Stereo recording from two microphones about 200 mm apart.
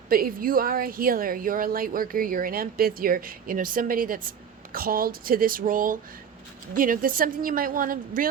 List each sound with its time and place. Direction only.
0.1 s speech: 45° right (ahead or behind)